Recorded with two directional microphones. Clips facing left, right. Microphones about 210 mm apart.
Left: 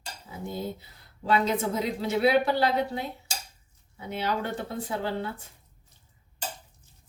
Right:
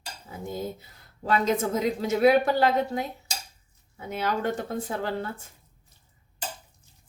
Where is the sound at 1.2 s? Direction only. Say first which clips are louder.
Right 1 dB; 45° right (ahead or behind).